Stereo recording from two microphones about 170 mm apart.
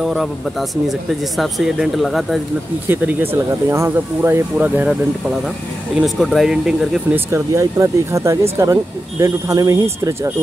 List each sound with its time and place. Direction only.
0.0 s speech: centre (ahead or behind)
2.9 s speech: 10° right (ahead or behind)
6.0 s speech: centre (ahead or behind)
7.3 s speech: 15° right (ahead or behind)